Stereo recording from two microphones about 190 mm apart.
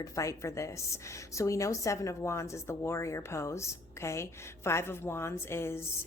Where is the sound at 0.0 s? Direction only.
15° left (ahead or behind).